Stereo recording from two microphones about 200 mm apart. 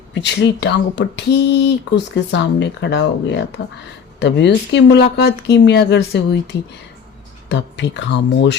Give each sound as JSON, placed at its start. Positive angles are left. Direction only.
{"t": 0.1, "sound": "speech", "side_deg": 60}